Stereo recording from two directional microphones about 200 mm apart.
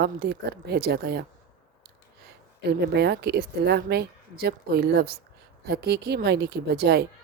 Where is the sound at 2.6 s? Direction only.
55° right (ahead or behind).